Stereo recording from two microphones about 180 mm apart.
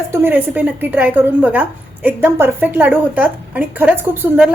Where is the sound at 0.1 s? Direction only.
10° right (ahead or behind).